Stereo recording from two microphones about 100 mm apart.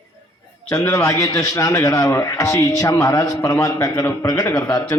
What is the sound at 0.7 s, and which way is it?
A man's voice, 30° left (ahead or behind).